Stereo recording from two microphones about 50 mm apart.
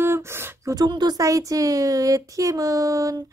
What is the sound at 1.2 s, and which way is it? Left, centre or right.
Speech, right.